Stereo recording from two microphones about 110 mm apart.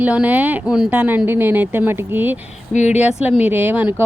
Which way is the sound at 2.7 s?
90° left.